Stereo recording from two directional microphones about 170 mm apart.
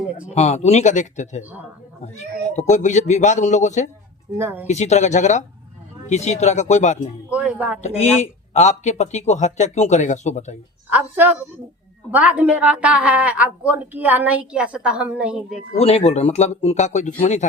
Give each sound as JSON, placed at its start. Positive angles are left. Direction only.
{"t": 0.3, "sound": "speech", "side_deg": 40}
{"t": 2.5, "sound": "speech", "side_deg": 45}
{"t": 4.4, "sound": "a woman's voice", "side_deg": -10}
{"t": 4.6, "sound": "speech", "side_deg": 40}
{"t": 7.3, "sound": "a sound", "side_deg": -10}
{"t": 7.8, "sound": "speech", "side_deg": 40}
{"t": 10.8, "sound": "a woman's voice", "side_deg": -10}
{"t": 15.8, "sound": "speech", "side_deg": 35}